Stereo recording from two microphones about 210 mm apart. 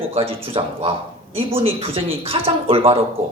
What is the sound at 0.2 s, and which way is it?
Speech, 25° right (ahead or behind).